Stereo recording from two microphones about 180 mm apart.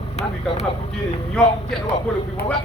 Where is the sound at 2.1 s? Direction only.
5° left (ahead or behind).